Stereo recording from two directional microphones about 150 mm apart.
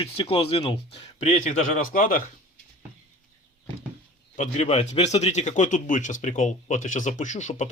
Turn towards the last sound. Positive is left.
turn(degrees=50)  # may be behind; listen again after turning